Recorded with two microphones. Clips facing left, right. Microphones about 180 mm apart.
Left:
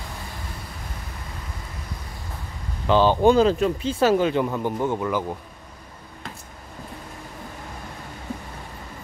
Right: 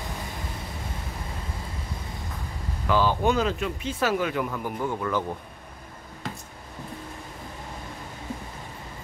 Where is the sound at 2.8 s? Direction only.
25° left (ahead or behind).